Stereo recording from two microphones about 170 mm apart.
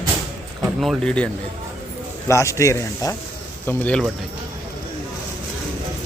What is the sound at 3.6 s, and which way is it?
Speech, 5° left (ahead or behind).